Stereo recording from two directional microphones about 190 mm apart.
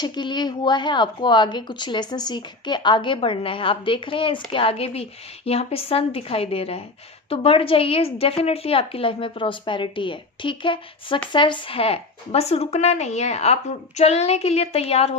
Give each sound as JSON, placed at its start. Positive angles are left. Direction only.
{"t": 0.0, "sound": "speech", "side_deg": 25}